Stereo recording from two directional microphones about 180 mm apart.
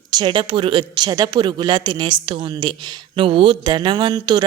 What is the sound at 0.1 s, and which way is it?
A woman's voice, 25° right (ahead or behind).